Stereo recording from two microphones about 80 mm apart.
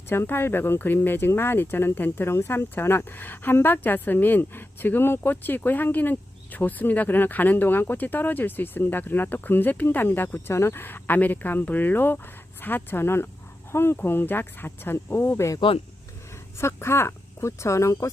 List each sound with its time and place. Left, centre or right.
0.1 s speech: left
16.6 s speech: left